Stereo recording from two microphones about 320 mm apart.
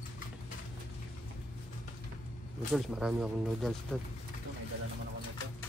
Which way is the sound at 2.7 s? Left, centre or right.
Centre.